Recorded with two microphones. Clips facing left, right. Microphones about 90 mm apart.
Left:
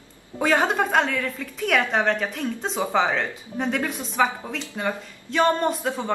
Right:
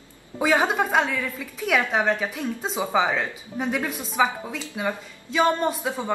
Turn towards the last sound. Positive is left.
turn(degrees=-5)  # may be behind; listen again after turning